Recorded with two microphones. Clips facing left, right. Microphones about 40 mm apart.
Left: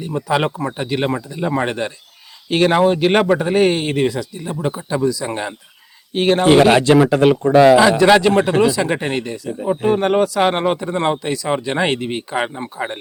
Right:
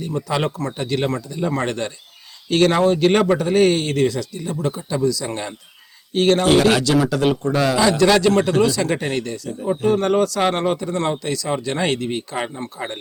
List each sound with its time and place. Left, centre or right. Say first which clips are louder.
0.0 s speech: left 3 dB; centre